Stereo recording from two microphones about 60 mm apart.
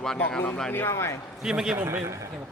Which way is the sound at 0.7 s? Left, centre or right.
Left.